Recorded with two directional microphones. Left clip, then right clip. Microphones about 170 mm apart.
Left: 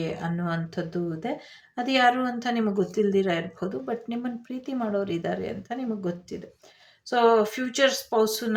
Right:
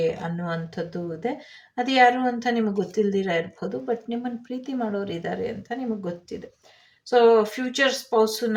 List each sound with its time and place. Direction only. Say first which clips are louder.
0.0 s speech: right 5 dB; 30° left (ahead or behind)